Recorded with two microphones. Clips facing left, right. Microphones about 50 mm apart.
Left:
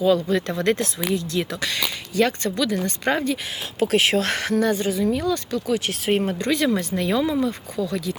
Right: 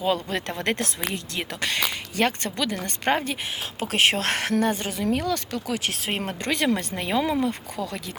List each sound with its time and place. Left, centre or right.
0.3 s speech: right
4.9 s speech: right
6.1 s speech: right
6.9 s speech: right
7.8 s speech: right